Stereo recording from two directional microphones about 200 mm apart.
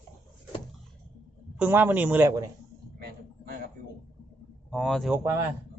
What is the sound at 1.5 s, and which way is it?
Speech, 10° right (ahead or behind).